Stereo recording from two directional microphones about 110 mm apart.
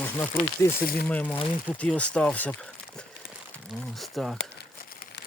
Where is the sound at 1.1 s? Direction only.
15° left (ahead or behind).